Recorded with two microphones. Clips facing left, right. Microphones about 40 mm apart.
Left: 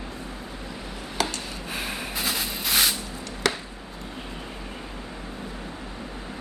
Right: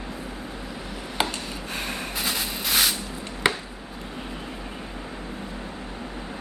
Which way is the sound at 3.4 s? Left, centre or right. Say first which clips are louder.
Right 2 dB; right.